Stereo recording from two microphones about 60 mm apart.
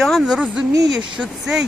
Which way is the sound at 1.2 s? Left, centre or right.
Centre.